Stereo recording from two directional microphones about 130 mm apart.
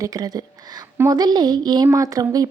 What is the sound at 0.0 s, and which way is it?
A woman's voice, 30° right (ahead or behind).